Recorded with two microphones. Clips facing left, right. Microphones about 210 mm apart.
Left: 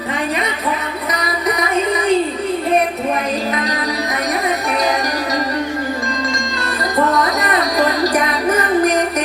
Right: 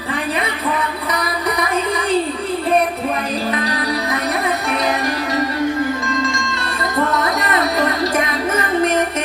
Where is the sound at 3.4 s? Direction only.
30° right (ahead or behind).